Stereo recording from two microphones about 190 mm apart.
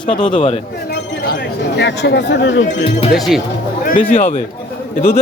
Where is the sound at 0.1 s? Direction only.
25° left (ahead or behind).